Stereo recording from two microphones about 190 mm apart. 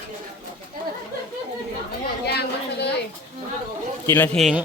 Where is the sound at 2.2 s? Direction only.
60° left (ahead or behind).